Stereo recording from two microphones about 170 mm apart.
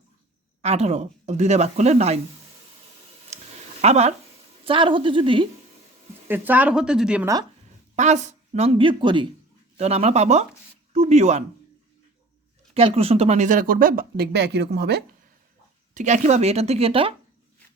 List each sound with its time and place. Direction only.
0.6 s speech: 40° right (ahead or behind)
3.3 s a sound: 40° right (ahead or behind)
3.8 s speech: 40° right (ahead or behind)
6.2 s speech: 10° right (ahead or behind)
7.9 s speech: 45° right (ahead or behind)
12.7 s speech: 35° right (ahead or behind); by 15.0 s 75° right (ahead or behind)
16.0 s speech: 45° right (ahead or behind)